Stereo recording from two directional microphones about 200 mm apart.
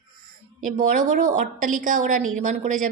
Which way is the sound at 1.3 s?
40° right (ahead or behind).